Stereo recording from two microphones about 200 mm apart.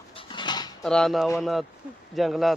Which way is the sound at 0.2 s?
25° left (ahead or behind).